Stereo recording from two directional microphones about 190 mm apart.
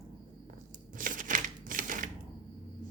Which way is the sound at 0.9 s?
45° right (ahead or behind).